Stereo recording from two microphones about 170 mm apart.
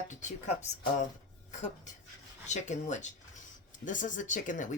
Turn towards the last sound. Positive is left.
turn(degrees=50)  # may be behind; listen again after turning